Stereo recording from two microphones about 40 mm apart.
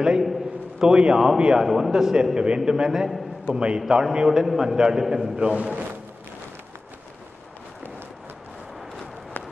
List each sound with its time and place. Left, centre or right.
0.7 s a man's voice: centre
3.4 s a man's voice: right
5.4 s a man's voice: right